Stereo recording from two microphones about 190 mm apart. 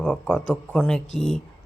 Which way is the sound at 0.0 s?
5° left (ahead or behind).